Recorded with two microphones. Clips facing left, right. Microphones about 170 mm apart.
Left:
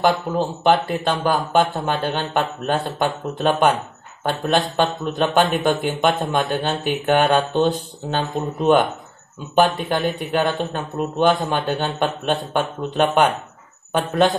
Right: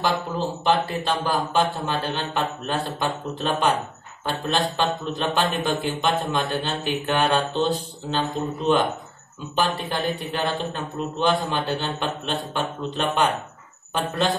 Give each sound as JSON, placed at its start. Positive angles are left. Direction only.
{"t": 0.0, "sound": "a man's voice", "side_deg": 55}